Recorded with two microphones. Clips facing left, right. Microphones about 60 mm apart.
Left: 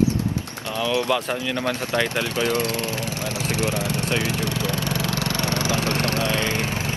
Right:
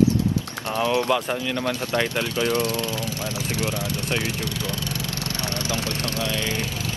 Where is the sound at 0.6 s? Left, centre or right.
Right.